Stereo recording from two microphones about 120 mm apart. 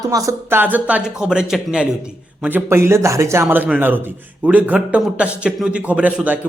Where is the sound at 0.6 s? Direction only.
15° right (ahead or behind).